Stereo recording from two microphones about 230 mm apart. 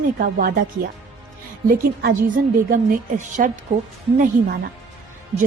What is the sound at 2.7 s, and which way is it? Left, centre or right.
Speech, right.